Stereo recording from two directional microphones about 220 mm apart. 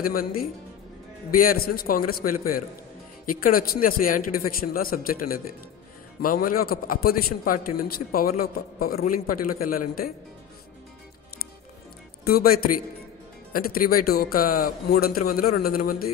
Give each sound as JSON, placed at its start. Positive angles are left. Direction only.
{"t": 0.0, "sound": "a man's voice", "side_deg": 40}
{"t": 1.5, "sound": "a man's voice", "side_deg": 40}
{"t": 6.2, "sound": "a man's voice", "side_deg": 40}
{"t": 12.3, "sound": "a man's voice", "side_deg": 40}